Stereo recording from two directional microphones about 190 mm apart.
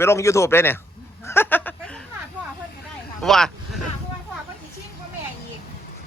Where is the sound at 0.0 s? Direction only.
15° left (ahead or behind).